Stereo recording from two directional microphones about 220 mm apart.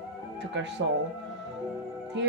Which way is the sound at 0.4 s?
55° right (ahead or behind).